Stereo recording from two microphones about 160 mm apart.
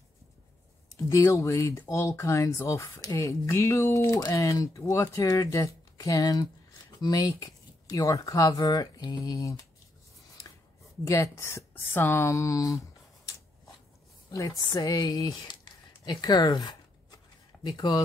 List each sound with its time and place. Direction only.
0.9 s speech: 20° left (ahead or behind)
11.1 s speech: 20° left (ahead or behind)
14.3 s speech: 20° left (ahead or behind)